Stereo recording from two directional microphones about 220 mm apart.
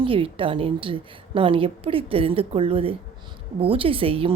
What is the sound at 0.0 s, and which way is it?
A woman's voice, 25° right (ahead or behind).